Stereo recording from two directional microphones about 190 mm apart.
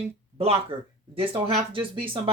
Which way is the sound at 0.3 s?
30° right (ahead or behind).